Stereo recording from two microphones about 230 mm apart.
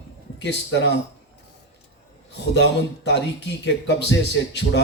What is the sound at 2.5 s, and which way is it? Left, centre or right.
A man's voice, left.